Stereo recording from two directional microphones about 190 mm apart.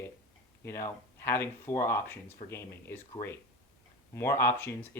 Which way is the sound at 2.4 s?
35° left (ahead or behind).